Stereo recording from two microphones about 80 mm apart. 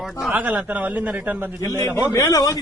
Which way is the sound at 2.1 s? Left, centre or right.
Left.